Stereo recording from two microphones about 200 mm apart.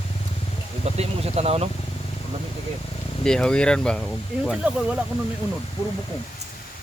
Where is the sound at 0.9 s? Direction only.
30° right (ahead or behind).